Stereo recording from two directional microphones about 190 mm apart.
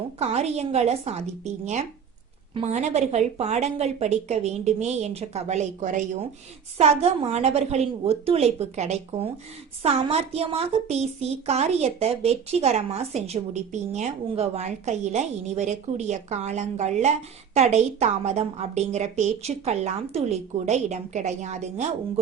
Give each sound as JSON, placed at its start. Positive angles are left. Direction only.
{"t": 0.2, "sound": "a woman's voice", "side_deg": -35}
{"t": 2.6, "sound": "a woman's voice", "side_deg": -35}